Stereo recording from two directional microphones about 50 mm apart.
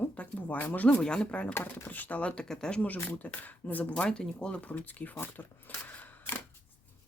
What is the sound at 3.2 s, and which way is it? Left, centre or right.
Speech, left.